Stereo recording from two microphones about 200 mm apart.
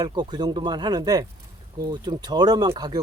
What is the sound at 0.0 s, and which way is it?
Speech, 20° right (ahead or behind).